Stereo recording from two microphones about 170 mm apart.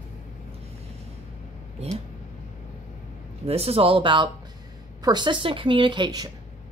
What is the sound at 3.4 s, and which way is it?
Speech, 35° right (ahead or behind).